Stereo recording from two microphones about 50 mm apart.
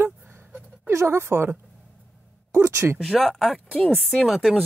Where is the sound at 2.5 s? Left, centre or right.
Right.